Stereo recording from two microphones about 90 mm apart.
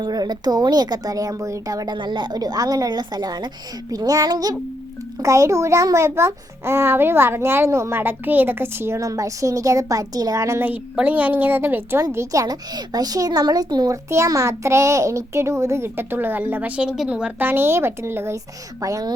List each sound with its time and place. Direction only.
0.0 s speech: 50° right (ahead or behind)
2.0 s speech: 60° right (ahead or behind)
5.2 s a child's voice: 35° right (ahead or behind)
10.9 s a woman's voice: 15° right (ahead or behind)
12.1 s speech: 35° right (ahead or behind)
13.9 s a child's voice: 35° right (ahead or behind); by 17.5 s 15° right (ahead or behind)
17.5 s a woman's voice: 25° right (ahead or behind)
18.8 s a child's voice: 40° right (ahead or behind)